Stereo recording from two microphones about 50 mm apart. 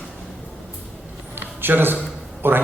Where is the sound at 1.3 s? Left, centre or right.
Right.